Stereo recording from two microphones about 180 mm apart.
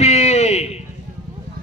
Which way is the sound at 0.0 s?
35° left (ahead or behind).